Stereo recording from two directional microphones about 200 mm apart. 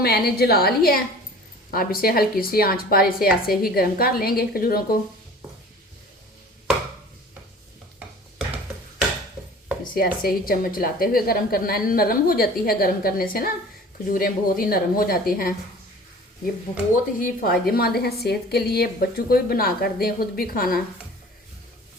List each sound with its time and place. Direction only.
0.0 s a woman's voice: 50° left (ahead or behind)
9.9 s a woman's voice: 45° left (ahead or behind)
16.9 s a woman's voice: 45° left (ahead or behind)